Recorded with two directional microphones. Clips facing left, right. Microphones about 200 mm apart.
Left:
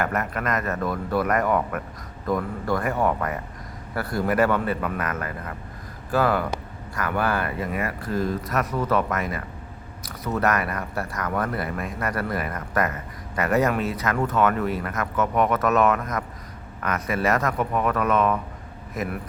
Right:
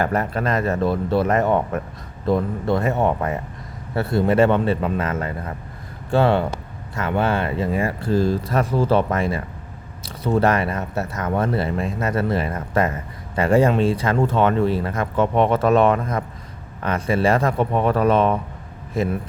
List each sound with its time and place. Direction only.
0.0 s speech: 30° right (ahead or behind)